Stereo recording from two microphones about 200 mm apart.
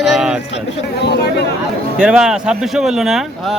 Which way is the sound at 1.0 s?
55° left (ahead or behind).